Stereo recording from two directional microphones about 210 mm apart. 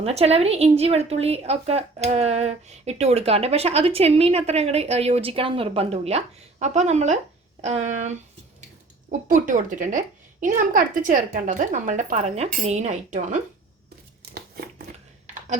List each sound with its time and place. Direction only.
0.0 s a woman's voice: 30° right (ahead or behind)